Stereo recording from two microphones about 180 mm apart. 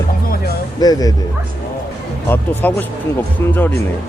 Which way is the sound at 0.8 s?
20° left (ahead or behind).